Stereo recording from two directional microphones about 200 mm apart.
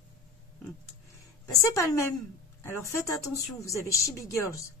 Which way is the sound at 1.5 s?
15° left (ahead or behind).